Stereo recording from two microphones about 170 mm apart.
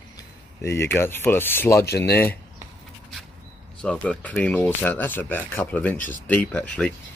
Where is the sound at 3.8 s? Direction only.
5° left (ahead or behind).